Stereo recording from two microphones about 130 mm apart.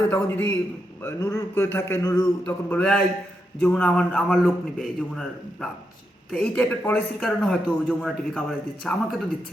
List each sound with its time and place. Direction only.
0.1 s a man's voice: 15° left (ahead or behind)
2.4 s a man's voice: 15° left (ahead or behind)
7.2 s a man's voice: centre (ahead or behind)